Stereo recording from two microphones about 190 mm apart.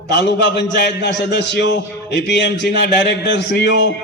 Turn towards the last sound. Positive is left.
turn(degrees=65)  # may be behind; listen again after turning